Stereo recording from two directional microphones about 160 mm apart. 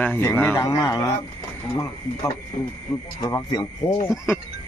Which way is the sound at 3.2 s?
20° left (ahead or behind).